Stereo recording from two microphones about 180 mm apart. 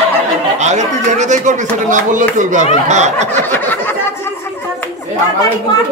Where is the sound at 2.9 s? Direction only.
40° right (ahead or behind).